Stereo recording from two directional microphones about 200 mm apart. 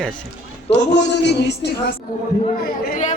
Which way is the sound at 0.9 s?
60° left (ahead or behind).